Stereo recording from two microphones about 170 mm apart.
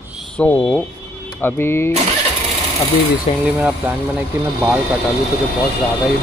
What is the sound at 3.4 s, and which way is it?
Speech, 10° right (ahead or behind).